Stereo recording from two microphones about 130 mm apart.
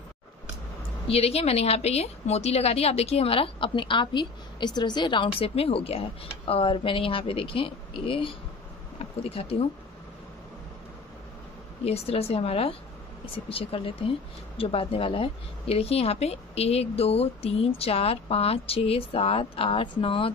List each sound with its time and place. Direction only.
1.0 s a woman's voice: 50° left (ahead or behind)
11.8 s a woman's voice: 50° left (ahead or behind)